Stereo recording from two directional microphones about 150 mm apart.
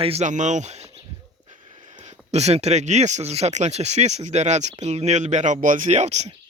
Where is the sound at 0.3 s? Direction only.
55° right (ahead or behind).